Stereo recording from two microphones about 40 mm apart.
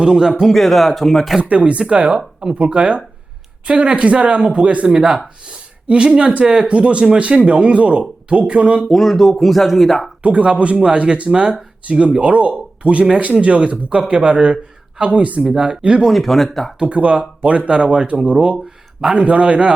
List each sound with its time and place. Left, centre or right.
0.0 s speech: centre
0.4 s speech: centre
1.4 s speech: right
2.1 s speech: right
4.9 s speech: right
5.5 s a sound: right
6.1 s speech: right
8.9 s speech: centre
10.2 s speech: right
15.4 s speech: centre
16.0 s speech: centre
16.7 s speech: right